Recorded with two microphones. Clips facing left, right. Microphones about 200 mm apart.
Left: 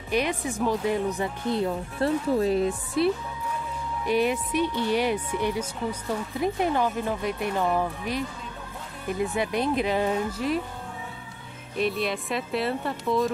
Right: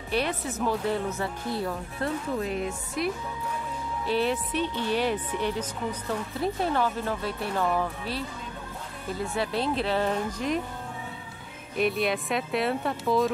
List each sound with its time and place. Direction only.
0.1 s speech: 15° left (ahead or behind)
2.3 s speech: 35° left (ahead or behind)
4.0 s speech: 15° left (ahead or behind)
9.2 s speech: 15° left (ahead or behind)
11.7 s speech: centre (ahead or behind)